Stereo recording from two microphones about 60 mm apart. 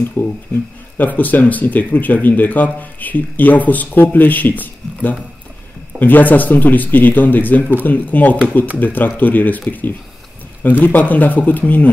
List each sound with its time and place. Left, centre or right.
0.2 s speech: left